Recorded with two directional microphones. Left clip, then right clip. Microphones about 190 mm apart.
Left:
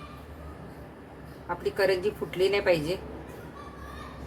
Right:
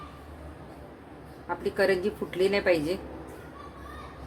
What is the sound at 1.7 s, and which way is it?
A woman's voice, 20° right (ahead or behind).